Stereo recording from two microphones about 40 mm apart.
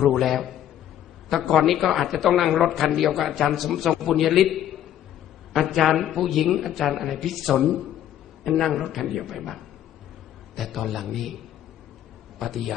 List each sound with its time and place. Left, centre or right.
0.1 s a woman's voice: centre
12.4 s a woman's voice: centre